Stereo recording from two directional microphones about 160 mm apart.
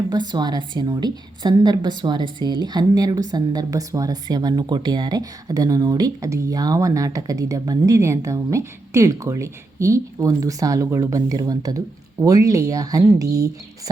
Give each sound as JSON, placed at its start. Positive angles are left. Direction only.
{"t": 0.1, "sound": "a woman's voice", "side_deg": -25}